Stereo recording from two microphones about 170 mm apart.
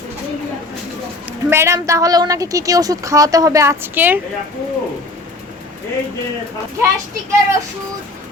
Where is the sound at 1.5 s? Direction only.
15° right (ahead or behind).